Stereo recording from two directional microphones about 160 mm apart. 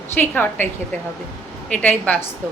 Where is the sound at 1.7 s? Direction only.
10° left (ahead or behind).